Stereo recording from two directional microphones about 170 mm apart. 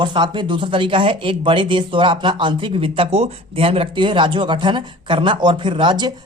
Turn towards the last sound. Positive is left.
turn(degrees=-25)  # may be behind; listen again after turning